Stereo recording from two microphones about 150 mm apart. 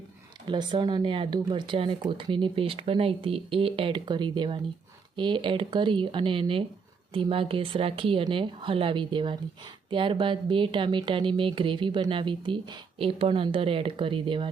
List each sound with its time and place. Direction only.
0.4 s speech: 30° right (ahead or behind)